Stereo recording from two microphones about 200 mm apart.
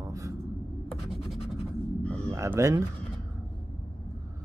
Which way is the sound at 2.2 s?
15° right (ahead or behind).